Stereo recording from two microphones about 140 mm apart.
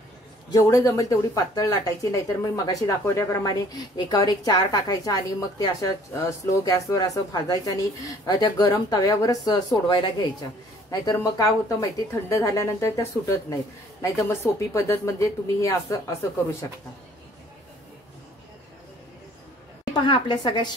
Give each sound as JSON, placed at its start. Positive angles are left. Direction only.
{"t": 0.5, "sound": "speech", "side_deg": 25}
{"t": 19.9, "sound": "a woman's voice", "side_deg": 35}